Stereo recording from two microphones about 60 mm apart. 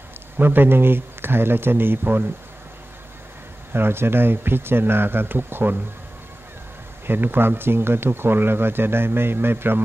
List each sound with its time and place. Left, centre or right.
0.4 s speech: right
3.7 s speech: right
7.1 s speech: right